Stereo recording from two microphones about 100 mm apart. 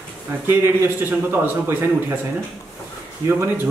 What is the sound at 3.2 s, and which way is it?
Speech, 25° right (ahead or behind).